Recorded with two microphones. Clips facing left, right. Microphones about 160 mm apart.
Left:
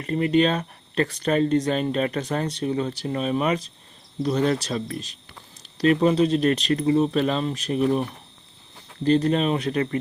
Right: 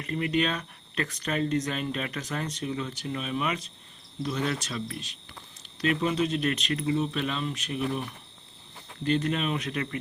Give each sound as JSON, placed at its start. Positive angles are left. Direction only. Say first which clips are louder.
{"t": 0.0, "sound": "speech", "louder": "left 7 dB", "side_deg": 35}
{"t": 9.0, "sound": "speech", "louder": "left 7 dB", "side_deg": 35}